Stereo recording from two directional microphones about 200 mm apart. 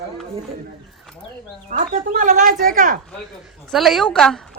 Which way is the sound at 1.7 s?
40° right (ahead or behind).